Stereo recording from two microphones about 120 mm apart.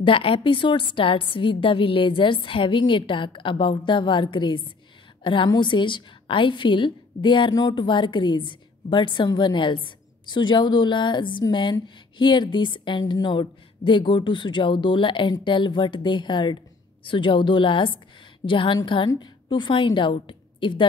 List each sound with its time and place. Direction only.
0.0 s a woman's voice: 45° left (ahead or behind)